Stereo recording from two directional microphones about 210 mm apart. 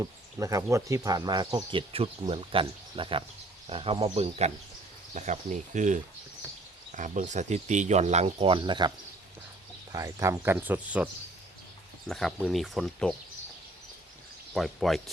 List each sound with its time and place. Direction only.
0.0 s speech: 15° right (ahead or behind)
9.9 s speech: 15° right (ahead or behind); by 13.1 s centre (ahead or behind)
14.5 s speech: centre (ahead or behind)